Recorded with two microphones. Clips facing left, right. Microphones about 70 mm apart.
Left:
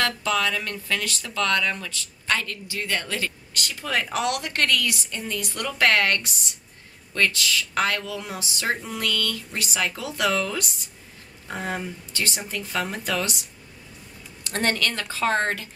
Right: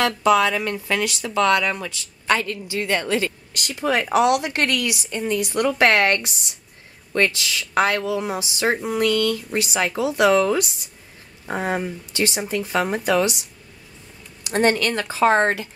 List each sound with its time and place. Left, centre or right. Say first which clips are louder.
0.0 s speech: right 7 dB; centre
14.4 s speech: right 6 dB; centre